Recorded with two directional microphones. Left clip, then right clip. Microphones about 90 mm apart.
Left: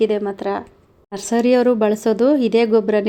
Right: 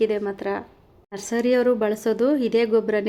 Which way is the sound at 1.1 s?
35° left (ahead or behind).